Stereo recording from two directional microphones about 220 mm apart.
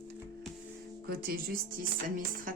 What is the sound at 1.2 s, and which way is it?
Speech, 40° right (ahead or behind).